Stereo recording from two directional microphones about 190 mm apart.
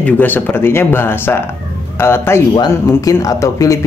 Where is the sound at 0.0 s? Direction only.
10° left (ahead or behind).